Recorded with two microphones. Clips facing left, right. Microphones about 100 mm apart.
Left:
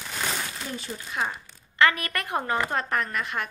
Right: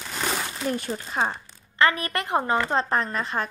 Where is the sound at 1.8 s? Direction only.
25° right (ahead or behind).